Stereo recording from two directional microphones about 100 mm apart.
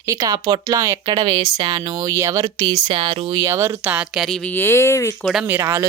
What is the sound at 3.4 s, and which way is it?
Speech, 30° right (ahead or behind).